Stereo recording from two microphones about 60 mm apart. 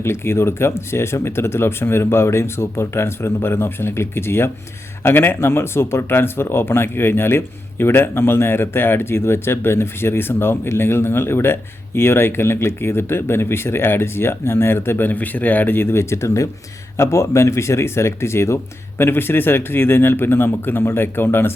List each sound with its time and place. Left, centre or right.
0.0 s speech: left